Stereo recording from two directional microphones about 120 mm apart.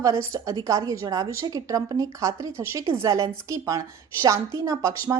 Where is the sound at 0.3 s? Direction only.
30° right (ahead or behind).